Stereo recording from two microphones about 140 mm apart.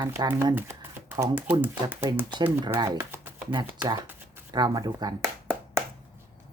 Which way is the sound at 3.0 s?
15° right (ahead or behind).